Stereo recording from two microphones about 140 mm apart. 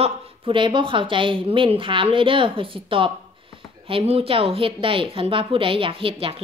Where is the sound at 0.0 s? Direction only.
40° right (ahead or behind).